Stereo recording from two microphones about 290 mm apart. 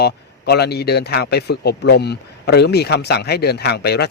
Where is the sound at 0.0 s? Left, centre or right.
Left.